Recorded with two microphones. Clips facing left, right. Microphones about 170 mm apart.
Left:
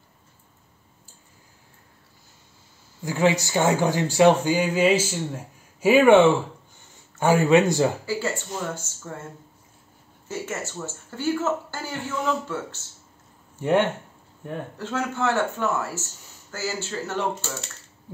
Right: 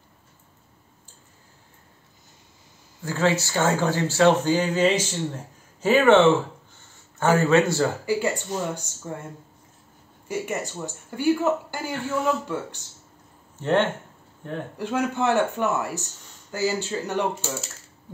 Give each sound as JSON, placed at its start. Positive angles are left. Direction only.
{"t": 3.0, "sound": "a man's voice", "side_deg": 15}
{"t": 8.0, "sound": "speech", "side_deg": -15}
{"t": 10.2, "sound": "speech", "side_deg": -15}
{"t": 13.6, "sound": "speech", "side_deg": 10}
{"t": 14.8, "sound": "speech", "side_deg": -15}